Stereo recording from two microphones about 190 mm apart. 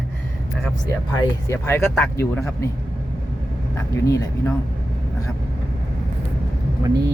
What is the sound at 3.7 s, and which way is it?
Speech, 15° left (ahead or behind).